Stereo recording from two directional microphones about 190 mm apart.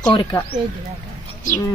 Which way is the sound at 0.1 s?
25° left (ahead or behind).